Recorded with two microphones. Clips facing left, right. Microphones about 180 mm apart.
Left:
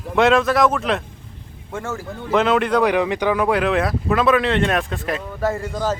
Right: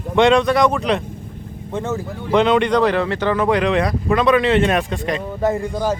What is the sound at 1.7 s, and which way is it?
Speech, 20° right (ahead or behind).